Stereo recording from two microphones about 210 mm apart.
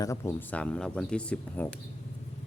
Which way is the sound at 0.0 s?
15° left (ahead or behind).